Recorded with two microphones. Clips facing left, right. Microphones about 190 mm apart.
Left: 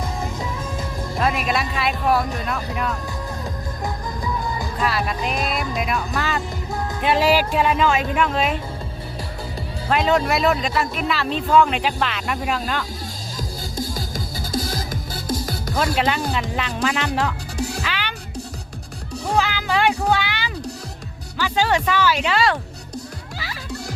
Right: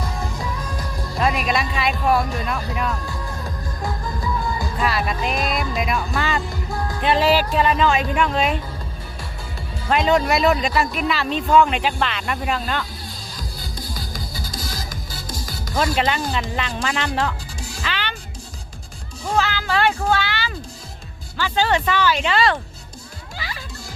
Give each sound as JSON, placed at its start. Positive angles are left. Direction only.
{"t": 0.0, "sound": "music", "side_deg": 20}
{"t": 1.2, "sound": "speech", "side_deg": 0}
{"t": 3.8, "sound": "music", "side_deg": 20}
{"t": 4.8, "sound": "speech", "side_deg": 0}
{"t": 5.7, "sound": "music", "side_deg": 0}
{"t": 7.0, "sound": "speech", "side_deg": 10}
{"t": 9.9, "sound": "speech", "side_deg": 0}
{"t": 13.7, "sound": "music", "side_deg": 45}
{"t": 16.0, "sound": "speech", "side_deg": 5}
{"t": 17.6, "sound": "music", "side_deg": 60}
{"t": 17.8, "sound": "music", "side_deg": 10}
{"t": 19.4, "sound": "speech", "side_deg": 15}
{"t": 23.4, "sound": "music", "side_deg": 5}